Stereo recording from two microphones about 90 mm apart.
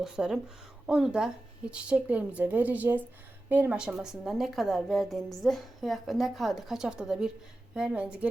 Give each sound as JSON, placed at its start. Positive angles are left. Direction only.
{"t": 0.0, "sound": "a woman's voice", "side_deg": -5}